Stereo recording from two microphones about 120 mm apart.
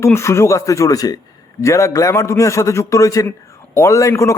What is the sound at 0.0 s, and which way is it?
A man's voice, 25° left (ahead or behind).